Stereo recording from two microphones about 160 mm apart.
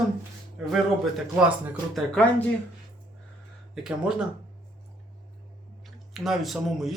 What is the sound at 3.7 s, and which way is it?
Speech, 5° right (ahead or behind).